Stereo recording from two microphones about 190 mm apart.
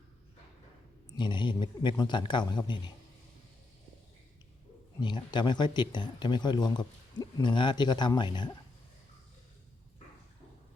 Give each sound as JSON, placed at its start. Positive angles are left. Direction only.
{"t": 1.1, "sound": "speech", "side_deg": 25}
{"t": 4.9, "sound": "speech", "side_deg": 25}